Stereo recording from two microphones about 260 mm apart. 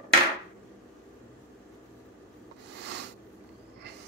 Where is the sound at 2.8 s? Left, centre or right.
Right.